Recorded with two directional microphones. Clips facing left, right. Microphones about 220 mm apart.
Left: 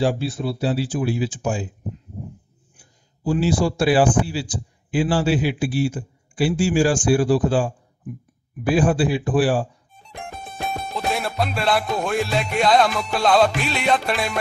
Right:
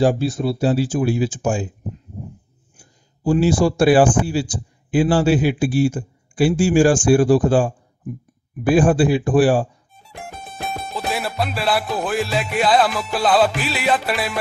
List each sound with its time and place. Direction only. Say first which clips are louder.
0.0 s speech: right 4 dB; 45° right (ahead or behind)
2.8 s speech: right 4 dB; 50° right (ahead or behind)
10.0 s music: even; 5° right (ahead or behind)